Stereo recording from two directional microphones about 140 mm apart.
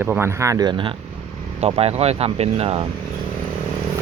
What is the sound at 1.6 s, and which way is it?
Speech, 45° right (ahead or behind).